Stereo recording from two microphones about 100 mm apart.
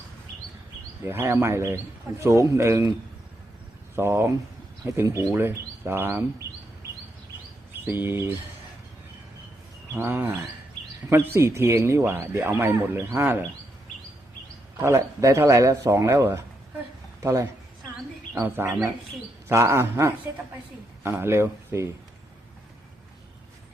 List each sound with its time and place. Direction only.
1.0 s speech: 25° right (ahead or behind)
3.9 s speech: 25° right (ahead or behind)
7.9 s speech: 20° right (ahead or behind)
9.9 s speech: 20° right (ahead or behind)
14.8 s speech: 25° right (ahead or behind)